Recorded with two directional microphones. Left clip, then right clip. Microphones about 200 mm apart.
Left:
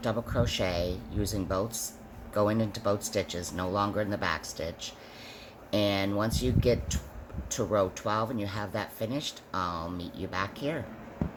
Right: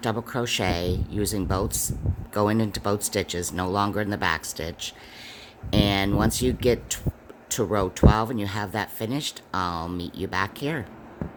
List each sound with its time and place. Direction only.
0.0 s speech: 55° right (ahead or behind)